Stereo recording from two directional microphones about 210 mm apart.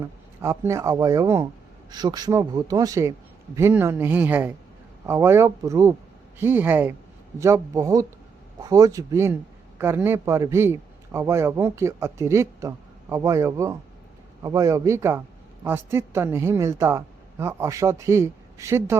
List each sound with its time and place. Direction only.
0.4 s a man's voice: 15° right (ahead or behind)